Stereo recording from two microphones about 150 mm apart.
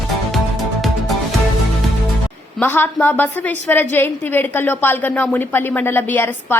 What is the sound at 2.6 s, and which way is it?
A woman's voice, 15° left (ahead or behind).